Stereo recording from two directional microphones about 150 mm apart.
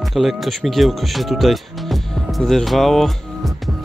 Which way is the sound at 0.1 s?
Centre (ahead or behind).